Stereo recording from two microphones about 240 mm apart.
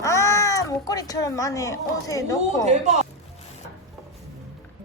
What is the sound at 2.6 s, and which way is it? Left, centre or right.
Speech, right.